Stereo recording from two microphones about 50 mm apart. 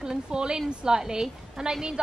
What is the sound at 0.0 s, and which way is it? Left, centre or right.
A woman's voice, centre.